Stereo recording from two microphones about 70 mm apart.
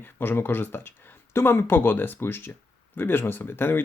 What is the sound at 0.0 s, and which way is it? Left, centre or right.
Speech, left.